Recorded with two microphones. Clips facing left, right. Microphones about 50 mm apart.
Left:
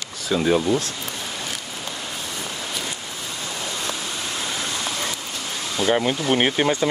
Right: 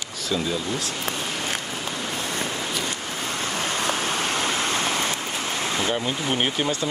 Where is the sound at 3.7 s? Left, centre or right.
Right.